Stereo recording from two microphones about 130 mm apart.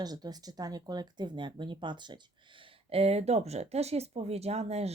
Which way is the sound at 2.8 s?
50° right (ahead or behind).